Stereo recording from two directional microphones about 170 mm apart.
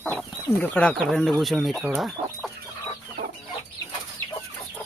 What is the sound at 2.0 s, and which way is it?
Chicken, centre (ahead or behind).